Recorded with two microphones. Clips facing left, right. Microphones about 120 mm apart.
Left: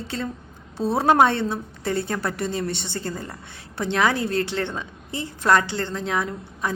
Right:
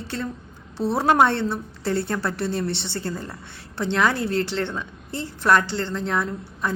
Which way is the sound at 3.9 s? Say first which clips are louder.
Even; 20° left (ahead or behind).